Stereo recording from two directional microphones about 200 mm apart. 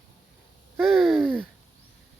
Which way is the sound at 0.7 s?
Centre (ahead or behind).